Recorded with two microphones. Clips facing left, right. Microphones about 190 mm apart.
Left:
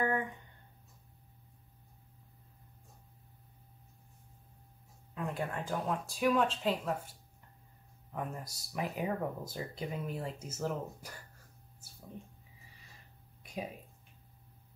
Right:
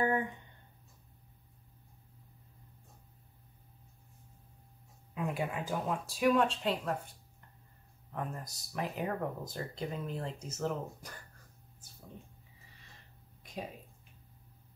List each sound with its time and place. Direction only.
0.0 s speech: 25° right (ahead or behind)
5.1 s speech: 10° right (ahead or behind)
8.1 s speech: 5° left (ahead or behind)